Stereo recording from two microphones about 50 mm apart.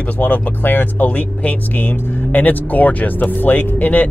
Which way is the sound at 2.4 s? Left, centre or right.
Left.